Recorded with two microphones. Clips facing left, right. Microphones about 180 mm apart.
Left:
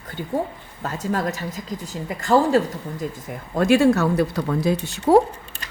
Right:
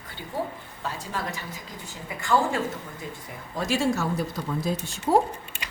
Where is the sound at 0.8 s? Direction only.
45° left (ahead or behind).